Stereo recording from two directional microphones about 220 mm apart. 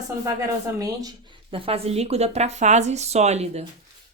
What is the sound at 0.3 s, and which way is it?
Speech, 15° right (ahead or behind).